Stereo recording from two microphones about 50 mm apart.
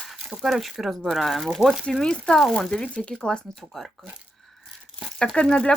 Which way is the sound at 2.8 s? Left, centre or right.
Left.